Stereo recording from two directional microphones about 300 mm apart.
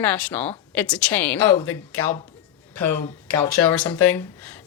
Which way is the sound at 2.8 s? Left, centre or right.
Right.